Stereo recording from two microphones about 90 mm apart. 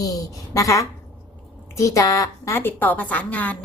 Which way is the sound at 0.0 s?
40° left (ahead or behind).